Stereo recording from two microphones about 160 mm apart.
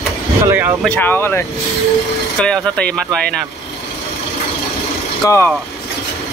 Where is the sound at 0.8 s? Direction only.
10° left (ahead or behind).